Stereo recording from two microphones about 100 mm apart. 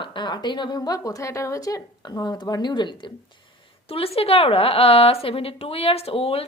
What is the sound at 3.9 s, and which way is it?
A woman's voice, 75° left (ahead or behind).